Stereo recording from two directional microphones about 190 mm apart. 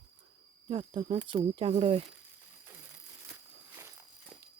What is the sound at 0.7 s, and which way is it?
Speech, 30° right (ahead or behind).